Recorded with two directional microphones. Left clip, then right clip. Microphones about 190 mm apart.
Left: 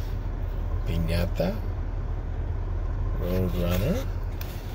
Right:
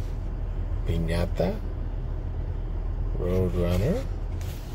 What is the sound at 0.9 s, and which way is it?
Speech, 15° right (ahead or behind).